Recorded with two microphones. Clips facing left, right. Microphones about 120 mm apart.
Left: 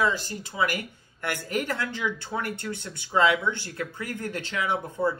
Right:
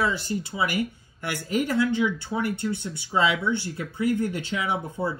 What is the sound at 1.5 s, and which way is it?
Speech, 55° left (ahead or behind).